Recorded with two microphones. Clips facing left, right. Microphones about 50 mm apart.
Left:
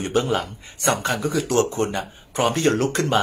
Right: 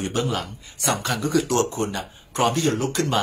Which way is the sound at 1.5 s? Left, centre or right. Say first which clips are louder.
Left 2 dB; left.